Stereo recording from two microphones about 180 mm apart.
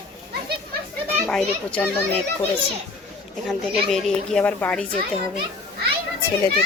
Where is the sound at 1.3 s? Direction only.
5° left (ahead or behind).